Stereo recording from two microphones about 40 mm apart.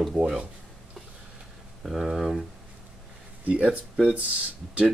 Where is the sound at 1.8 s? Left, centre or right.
Centre.